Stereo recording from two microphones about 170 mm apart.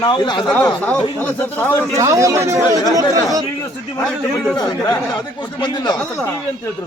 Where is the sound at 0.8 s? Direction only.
10° left (ahead or behind).